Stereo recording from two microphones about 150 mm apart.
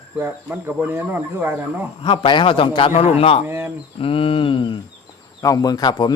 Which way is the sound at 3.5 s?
15° right (ahead or behind).